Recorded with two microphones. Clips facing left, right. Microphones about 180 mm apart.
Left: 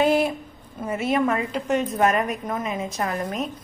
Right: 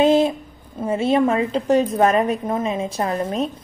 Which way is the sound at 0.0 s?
20° right (ahead or behind).